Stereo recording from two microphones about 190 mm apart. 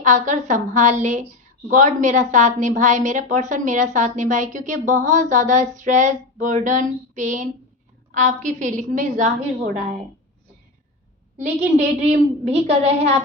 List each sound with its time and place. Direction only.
0.0 s a woman's voice: 40° right (ahead or behind)
11.3 s a woman's voice: 40° right (ahead or behind)